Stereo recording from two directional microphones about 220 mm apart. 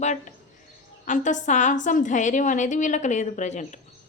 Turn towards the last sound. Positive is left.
turn(degrees=35)  # may be behind; listen again after turning